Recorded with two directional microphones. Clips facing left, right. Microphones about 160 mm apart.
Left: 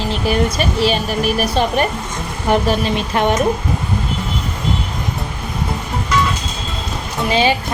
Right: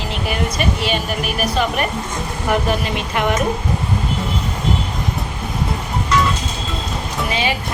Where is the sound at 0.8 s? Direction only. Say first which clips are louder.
Left 4 dB; 35° left (ahead or behind).